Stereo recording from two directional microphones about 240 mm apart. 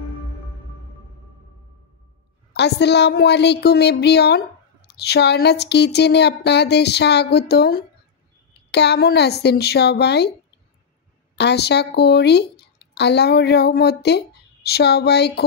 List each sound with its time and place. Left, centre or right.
2.5 s speech: left
11.3 s a woman's voice: left